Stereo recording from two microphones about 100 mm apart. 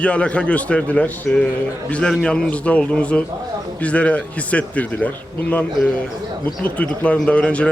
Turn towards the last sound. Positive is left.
turn(degrees=10)  # may be behind; listen again after turning